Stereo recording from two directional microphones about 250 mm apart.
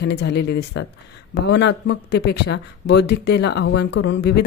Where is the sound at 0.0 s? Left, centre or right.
Left.